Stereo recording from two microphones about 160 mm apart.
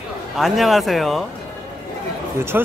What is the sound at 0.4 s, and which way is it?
Speech, centre (ahead or behind).